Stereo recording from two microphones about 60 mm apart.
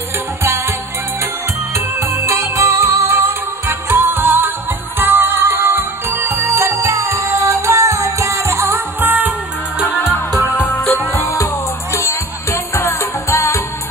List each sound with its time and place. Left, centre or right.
0.4 s music: right
2.2 s music: right
3.1 s music: right
6.5 s music: right
9.0 s music: right
12.1 s music: left